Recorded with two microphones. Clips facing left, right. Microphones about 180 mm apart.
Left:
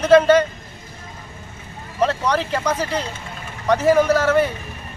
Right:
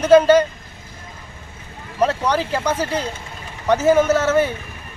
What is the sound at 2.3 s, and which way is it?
Speech, 5° right (ahead or behind).